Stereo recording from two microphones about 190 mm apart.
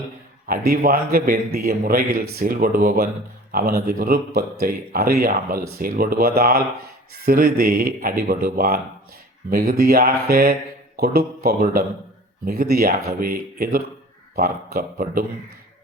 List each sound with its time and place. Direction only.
0.4 s a man's voice: 50° right (ahead or behind)